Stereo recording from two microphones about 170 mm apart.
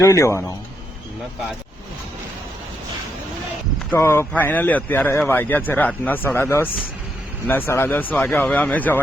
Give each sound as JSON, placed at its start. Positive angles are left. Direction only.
{"t": 0.0, "sound": "speech", "side_deg": 20}
{"t": 3.9, "sound": "speech", "side_deg": 15}